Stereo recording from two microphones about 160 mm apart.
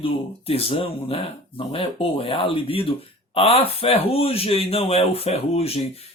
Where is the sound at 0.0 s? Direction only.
35° left (ahead or behind).